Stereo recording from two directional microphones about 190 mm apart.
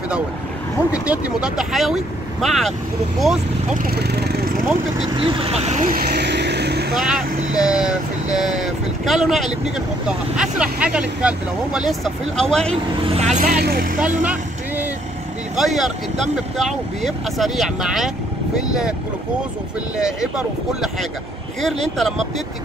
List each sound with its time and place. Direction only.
1.0 s speech: 5° right (ahead or behind)
3.7 s speech: 50° right (ahead or behind)
5.1 s speech: 25° right (ahead or behind); by 6.9 s 60° right (ahead or behind)
6.9 s speech: 5° right (ahead or behind)
13.1 s speech: 35° right (ahead or behind)
13.5 s speech: 55° right (ahead or behind)
13.9 s vehicle: 5° right (ahead or behind)
15.5 s speech: centre (ahead or behind)
20.0 s speech: 5° right (ahead or behind)